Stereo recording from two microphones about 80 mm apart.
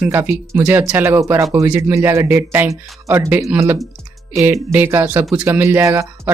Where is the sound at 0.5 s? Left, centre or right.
Right.